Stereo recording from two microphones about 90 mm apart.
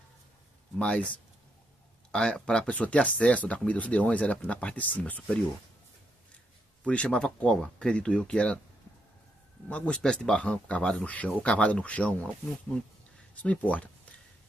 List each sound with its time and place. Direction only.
0.7 s speech: 15° left (ahead or behind)
6.8 s speech: 10° left (ahead or behind)
9.7 s speech: 15° left (ahead or behind)
13.4 s speech: 15° left (ahead or behind)